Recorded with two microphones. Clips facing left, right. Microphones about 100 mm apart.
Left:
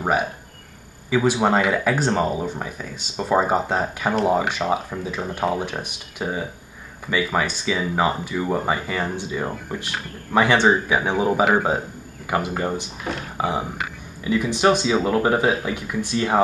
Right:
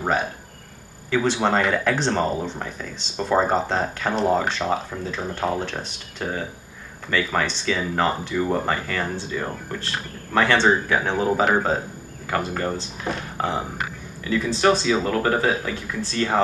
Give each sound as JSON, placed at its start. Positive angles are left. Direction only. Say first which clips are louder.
{"t": 0.0, "sound": "speech", "louder": "left 1 dB", "side_deg": 10}
{"t": 13.0, "sound": "speech", "louder": "even", "side_deg": 5}